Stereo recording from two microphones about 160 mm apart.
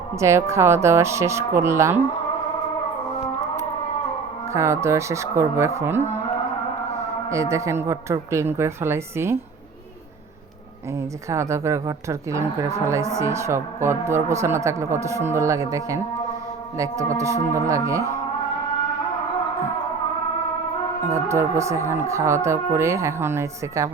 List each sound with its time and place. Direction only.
0.2 s a woman's voice: 20° right (ahead or behind)
4.5 s a woman's voice: 15° right (ahead or behind)
6.0 s speech: 45° right (ahead or behind)
7.3 s a woman's voice: 20° right (ahead or behind)
10.9 s a woman's voice: 20° right (ahead or behind)
21.1 s a woman's voice: 15° right (ahead or behind)